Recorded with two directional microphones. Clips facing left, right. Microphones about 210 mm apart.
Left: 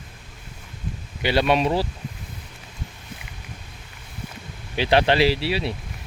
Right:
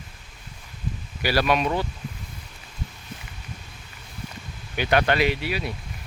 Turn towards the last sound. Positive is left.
turn(degrees=30)  # may be behind; listen again after turning